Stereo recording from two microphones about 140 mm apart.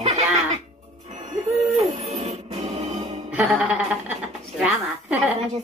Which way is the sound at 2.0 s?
45° right (ahead or behind).